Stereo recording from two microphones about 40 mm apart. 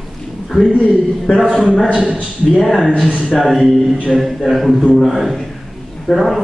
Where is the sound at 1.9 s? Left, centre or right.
Right.